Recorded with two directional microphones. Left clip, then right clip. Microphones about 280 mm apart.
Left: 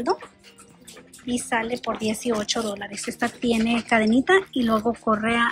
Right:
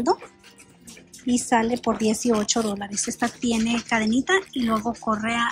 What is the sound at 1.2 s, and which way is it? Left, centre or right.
Speech, centre.